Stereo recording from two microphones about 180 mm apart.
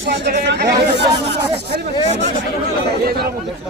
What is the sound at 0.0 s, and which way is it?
Speech, 65° right (ahead or behind).